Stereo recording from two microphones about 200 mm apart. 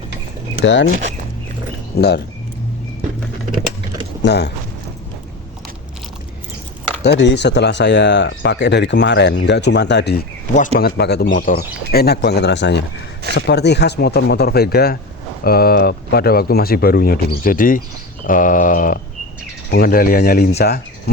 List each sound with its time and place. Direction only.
0.6 s speech: 65° left (ahead or behind)
2.0 s speech: 55° left (ahead or behind)
4.2 s speech: 55° left (ahead or behind)
7.0 s speech: 60° left (ahead or behind); by 17.8 s 45° left (ahead or behind)
18.3 s a sound: 40° left (ahead or behind)
19.7 s speech: 45° left (ahead or behind)